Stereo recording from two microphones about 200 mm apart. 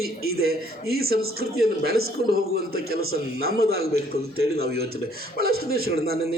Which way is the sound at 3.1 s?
50° right (ahead or behind).